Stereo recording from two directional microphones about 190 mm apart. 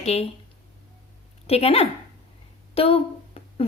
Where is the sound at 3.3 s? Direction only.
30° left (ahead or behind).